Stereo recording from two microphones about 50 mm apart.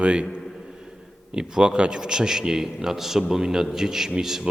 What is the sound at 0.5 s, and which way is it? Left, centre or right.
Speech, centre.